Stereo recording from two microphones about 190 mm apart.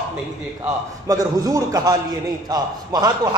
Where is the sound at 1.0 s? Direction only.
20° right (ahead or behind).